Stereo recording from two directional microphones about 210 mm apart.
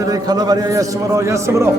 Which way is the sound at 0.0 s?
20° right (ahead or behind).